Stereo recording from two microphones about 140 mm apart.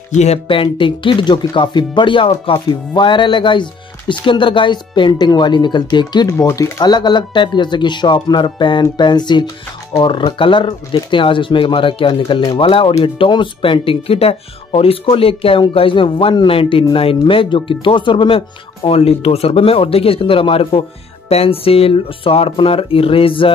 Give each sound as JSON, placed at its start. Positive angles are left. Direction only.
{"t": 0.2, "sound": "speech", "side_deg": 45}
{"t": 6.3, "sound": "speech", "side_deg": 20}